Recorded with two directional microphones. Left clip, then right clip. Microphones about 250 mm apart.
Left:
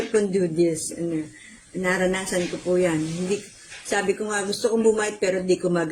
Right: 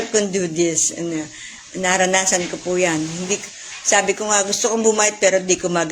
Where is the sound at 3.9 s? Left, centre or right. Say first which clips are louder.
Right 7 dB; centre.